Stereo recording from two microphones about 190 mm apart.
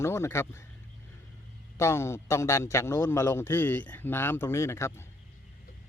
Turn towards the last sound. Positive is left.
turn(degrees=15)  # may be behind; listen again after turning